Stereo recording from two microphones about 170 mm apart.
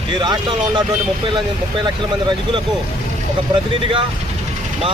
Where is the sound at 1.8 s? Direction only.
25° right (ahead or behind).